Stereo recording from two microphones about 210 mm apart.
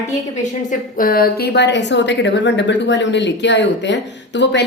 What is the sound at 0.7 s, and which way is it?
A woman's voice, 40° left (ahead or behind).